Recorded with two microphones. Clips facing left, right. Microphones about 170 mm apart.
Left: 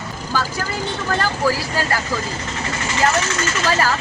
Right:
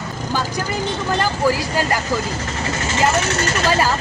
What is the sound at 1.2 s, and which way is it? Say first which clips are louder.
Speech: right 2 dB; 15° right (ahead or behind).